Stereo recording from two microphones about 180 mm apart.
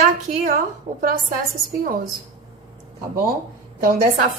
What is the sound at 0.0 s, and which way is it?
Speech, 50° right (ahead or behind).